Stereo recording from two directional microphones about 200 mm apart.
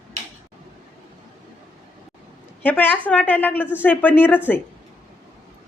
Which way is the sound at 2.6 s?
10° left (ahead or behind).